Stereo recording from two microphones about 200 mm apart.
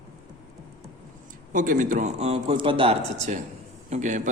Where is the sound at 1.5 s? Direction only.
40° right (ahead or behind).